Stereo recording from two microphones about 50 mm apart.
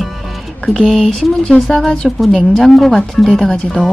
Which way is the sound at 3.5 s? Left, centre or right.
Centre.